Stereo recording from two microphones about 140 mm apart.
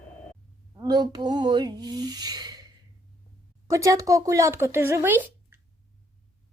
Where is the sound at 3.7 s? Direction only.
20° right (ahead or behind).